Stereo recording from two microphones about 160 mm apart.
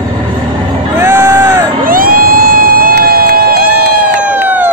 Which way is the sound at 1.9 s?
65° right (ahead or behind).